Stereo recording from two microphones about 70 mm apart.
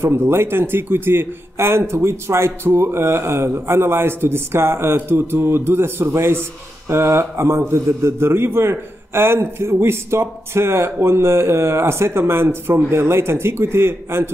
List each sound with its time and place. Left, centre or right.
0.0 s a man's voice: right